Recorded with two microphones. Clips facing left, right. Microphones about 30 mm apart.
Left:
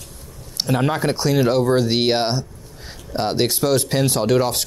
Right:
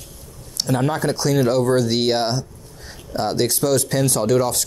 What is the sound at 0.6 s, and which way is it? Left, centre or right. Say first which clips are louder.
Speech: left 1 dB; left.